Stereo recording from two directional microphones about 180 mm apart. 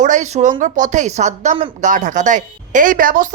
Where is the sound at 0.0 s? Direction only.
40° right (ahead or behind).